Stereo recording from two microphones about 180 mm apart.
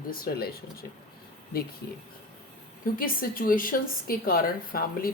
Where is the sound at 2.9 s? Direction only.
50° left (ahead or behind).